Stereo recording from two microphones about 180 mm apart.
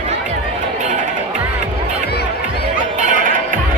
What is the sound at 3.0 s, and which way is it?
Music, 45° right (ahead or behind).